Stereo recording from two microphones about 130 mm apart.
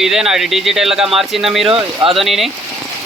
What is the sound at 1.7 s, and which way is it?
Speech, 45° right (ahead or behind).